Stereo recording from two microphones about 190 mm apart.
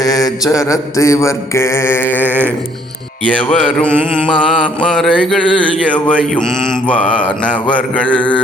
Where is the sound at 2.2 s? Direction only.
10° right (ahead or behind).